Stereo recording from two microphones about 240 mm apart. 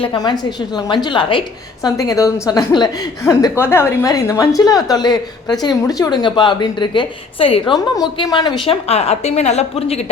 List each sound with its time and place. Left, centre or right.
0.0 s a woman's voice: centre